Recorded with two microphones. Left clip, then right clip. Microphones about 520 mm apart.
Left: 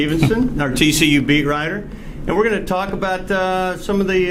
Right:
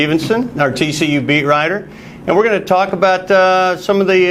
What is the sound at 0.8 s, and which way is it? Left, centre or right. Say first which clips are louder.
Speech: left 1 dB; centre.